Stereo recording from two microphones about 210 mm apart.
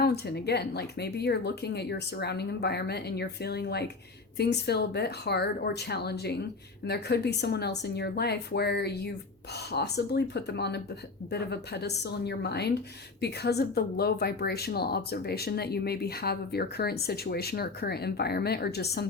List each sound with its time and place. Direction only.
0.0 s speech: 50° left (ahead or behind)